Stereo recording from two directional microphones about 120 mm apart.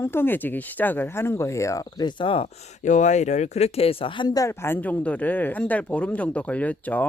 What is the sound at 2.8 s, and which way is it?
Speech, 85° left.